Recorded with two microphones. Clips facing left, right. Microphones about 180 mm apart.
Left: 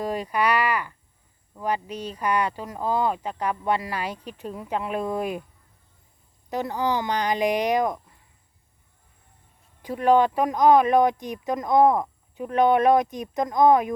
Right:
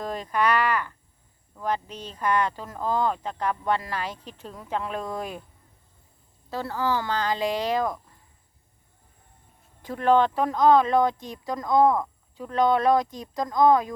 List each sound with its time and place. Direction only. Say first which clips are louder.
0.0 s speech: left 1 dB; 10° left (ahead or behind)
6.5 s speech: left 2 dB; 20° left (ahead or behind)
9.8 s speech: left 2 dB; 10° left (ahead or behind)